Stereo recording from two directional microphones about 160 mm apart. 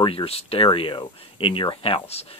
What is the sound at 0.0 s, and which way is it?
Speech, 35° left (ahead or behind).